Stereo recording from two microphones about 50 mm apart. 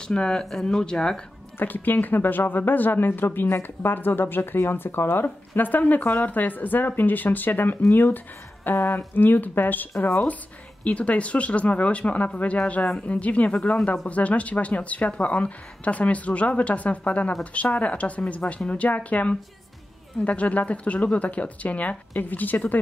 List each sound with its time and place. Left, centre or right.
0.1 s speech: centre
1.6 s a woman's voice: left